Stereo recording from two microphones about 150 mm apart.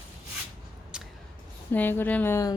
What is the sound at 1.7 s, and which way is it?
Speech, 15° left (ahead or behind).